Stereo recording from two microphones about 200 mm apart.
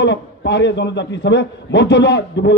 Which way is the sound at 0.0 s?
60° left (ahead or behind).